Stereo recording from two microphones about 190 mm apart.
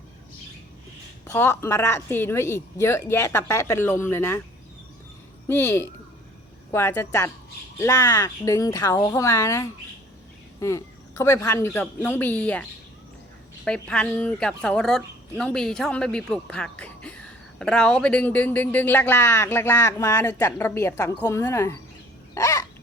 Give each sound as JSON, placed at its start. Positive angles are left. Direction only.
{"t": 1.2, "sound": "speech", "side_deg": 10}
{"t": 5.5, "sound": "speech", "side_deg": 15}
{"t": 13.7, "sound": "speech", "side_deg": 5}
{"t": 22.4, "sound": "bird", "side_deg": 15}